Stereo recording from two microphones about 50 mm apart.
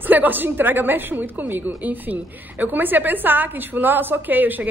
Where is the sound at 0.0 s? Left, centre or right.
Right.